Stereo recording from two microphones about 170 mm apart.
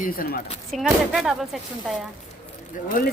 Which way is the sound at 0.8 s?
5° right (ahead or behind).